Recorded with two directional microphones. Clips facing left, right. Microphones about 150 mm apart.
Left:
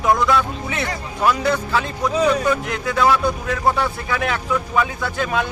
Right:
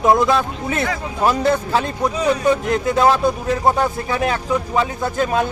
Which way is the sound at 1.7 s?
30° right (ahead or behind).